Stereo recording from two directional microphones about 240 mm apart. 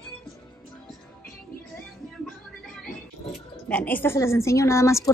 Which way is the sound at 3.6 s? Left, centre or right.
Centre.